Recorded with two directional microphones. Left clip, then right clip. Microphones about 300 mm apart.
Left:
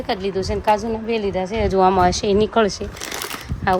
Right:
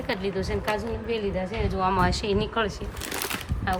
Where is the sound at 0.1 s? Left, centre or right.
Centre.